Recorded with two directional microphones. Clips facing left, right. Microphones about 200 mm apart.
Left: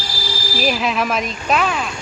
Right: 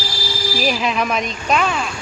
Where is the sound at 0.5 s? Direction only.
Centre (ahead or behind).